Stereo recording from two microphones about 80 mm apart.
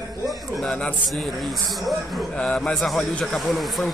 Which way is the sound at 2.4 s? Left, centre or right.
Centre.